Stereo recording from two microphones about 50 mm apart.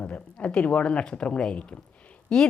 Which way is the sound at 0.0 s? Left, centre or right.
Left.